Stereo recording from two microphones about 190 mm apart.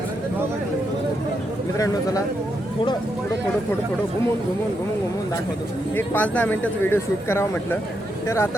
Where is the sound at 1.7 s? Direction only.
20° left (ahead or behind).